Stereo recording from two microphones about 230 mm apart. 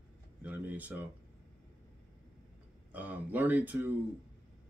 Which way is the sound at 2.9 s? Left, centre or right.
Centre.